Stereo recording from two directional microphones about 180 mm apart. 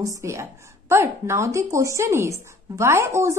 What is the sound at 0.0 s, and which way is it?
A woman's voice, 15° right (ahead or behind).